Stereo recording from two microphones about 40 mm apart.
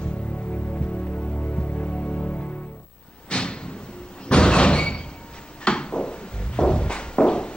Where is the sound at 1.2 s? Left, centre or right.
Left.